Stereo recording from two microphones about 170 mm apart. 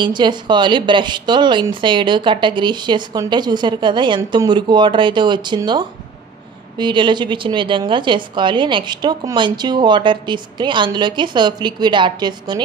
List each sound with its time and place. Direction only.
0.0 s a woman's voice: 25° right (ahead or behind)